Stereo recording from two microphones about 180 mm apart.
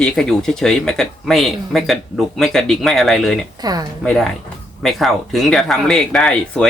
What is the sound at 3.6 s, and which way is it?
Speech, 20° right (ahead or behind).